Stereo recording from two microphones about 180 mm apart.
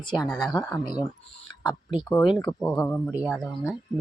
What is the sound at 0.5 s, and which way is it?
Speech, 15° left (ahead or behind).